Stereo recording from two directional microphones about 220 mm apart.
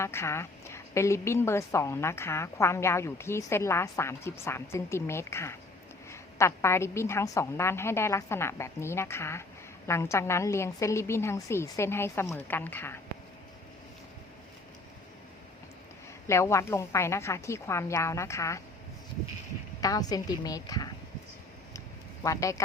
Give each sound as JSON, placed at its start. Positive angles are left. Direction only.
{"t": 0.0, "sound": "a woman's voice", "side_deg": 10}
{"t": 16.2, "sound": "a woman's voice", "side_deg": 10}
{"t": 19.8, "sound": "a woman's voice", "side_deg": 15}
{"t": 22.2, "sound": "a woman's voice", "side_deg": 15}